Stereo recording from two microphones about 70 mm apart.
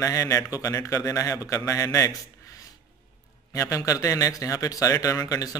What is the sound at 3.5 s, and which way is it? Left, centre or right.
Speech, left.